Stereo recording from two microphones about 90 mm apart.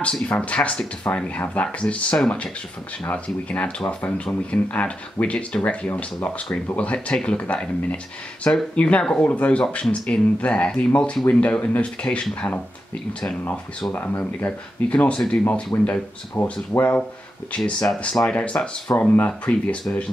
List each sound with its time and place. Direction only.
0.0 s speech: 10° left (ahead or behind)
13.9 s speech: 20° left (ahead or behind)
17.6 s speech: 5° left (ahead or behind)